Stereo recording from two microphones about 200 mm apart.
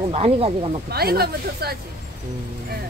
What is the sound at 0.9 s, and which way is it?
Speech, 50° right (ahead or behind).